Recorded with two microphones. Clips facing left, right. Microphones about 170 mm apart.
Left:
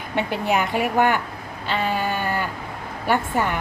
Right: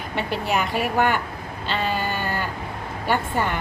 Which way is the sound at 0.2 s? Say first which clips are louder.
Left 2 dB; 20° left (ahead or behind).